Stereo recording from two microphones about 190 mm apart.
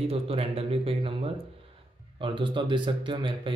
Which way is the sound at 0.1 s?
30° right (ahead or behind).